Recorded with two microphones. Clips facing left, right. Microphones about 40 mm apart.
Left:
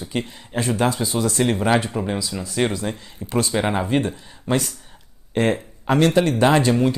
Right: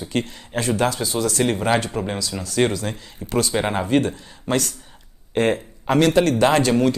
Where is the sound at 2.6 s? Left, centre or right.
Left.